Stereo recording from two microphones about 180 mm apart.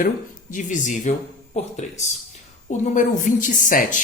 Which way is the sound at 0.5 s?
45° left (ahead or behind).